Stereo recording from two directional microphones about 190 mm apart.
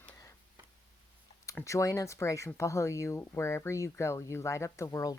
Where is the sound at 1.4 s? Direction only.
15° left (ahead or behind).